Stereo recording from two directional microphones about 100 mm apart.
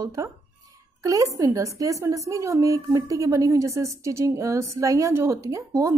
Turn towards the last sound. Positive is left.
turn(degrees=-30)  # may be behind; listen again after turning